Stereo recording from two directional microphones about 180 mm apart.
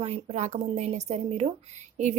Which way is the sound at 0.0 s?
35° right (ahead or behind).